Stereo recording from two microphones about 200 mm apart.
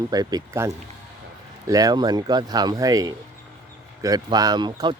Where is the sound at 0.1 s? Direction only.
20° right (ahead or behind).